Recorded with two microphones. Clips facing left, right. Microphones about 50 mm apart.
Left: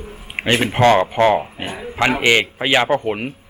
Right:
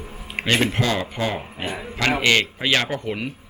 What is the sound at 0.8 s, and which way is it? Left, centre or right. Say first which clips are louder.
Speech: left 10 dB; left.